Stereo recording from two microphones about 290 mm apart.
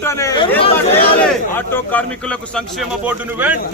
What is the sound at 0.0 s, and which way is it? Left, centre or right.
A man's voice, centre.